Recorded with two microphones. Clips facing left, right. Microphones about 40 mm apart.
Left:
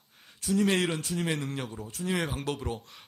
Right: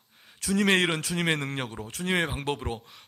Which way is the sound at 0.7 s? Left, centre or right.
Right.